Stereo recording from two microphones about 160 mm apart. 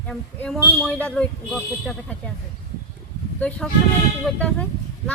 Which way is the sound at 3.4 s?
10° left (ahead or behind).